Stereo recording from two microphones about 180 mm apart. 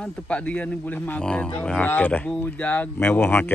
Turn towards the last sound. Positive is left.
turn(degrees=10)  # may be behind; listen again after turning